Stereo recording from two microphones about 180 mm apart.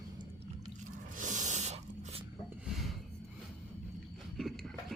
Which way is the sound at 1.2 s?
45° right (ahead or behind).